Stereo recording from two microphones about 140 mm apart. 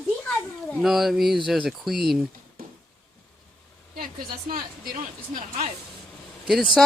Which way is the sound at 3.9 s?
90° right.